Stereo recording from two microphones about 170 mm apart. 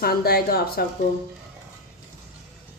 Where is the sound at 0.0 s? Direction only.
65° left (ahead or behind).